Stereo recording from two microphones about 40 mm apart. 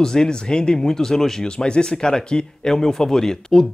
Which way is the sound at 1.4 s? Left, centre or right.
Left.